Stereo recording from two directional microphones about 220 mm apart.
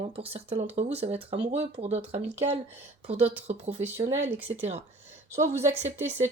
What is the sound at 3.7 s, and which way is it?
Speech, 10° right (ahead or behind).